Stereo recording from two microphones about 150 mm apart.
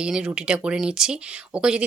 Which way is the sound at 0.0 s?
5° right (ahead or behind).